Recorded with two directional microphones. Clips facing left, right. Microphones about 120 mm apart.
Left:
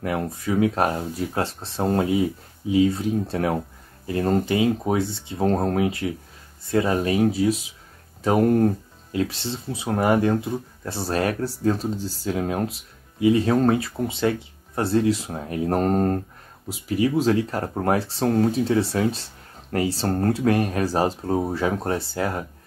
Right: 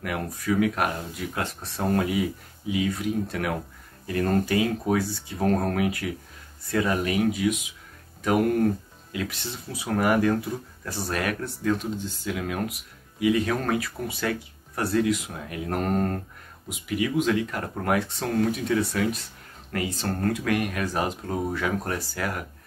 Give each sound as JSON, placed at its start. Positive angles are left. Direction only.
{"t": 0.0, "sound": "speech", "side_deg": 25}